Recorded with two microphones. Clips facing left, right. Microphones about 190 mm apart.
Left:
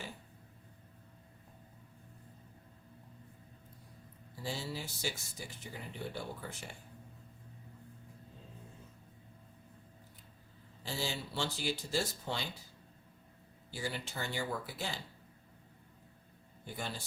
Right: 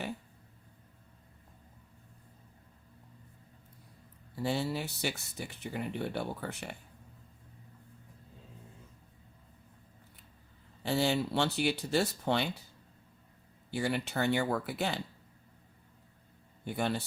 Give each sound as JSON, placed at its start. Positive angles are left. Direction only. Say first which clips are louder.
{"t": 4.4, "sound": "speech", "louder": "right 8 dB", "side_deg": -65}
{"t": 10.8, "sound": "speech", "louder": "right 10 dB", "side_deg": -65}
{"t": 13.7, "sound": "speech", "louder": "right 8 dB", "side_deg": -65}
{"t": 16.6, "sound": "speech", "louder": "right 10 dB", "side_deg": -65}